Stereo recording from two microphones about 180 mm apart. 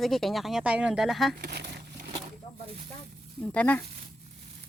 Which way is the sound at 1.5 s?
65° right (ahead or behind).